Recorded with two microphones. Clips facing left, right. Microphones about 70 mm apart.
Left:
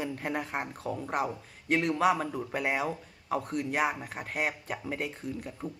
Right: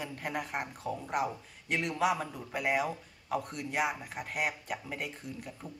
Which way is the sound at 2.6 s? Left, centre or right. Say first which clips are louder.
Right 3 dB; left.